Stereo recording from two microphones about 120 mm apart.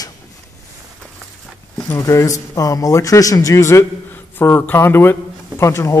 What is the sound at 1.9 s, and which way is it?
Speech, 30° left (ahead or behind).